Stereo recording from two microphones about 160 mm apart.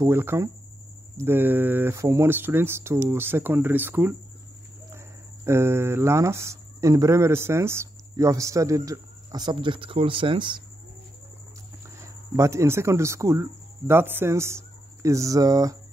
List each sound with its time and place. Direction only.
0.0 s speech: 15° right (ahead or behind); by 10.6 s 30° right (ahead or behind)
12.0 s speech: 20° right (ahead or behind)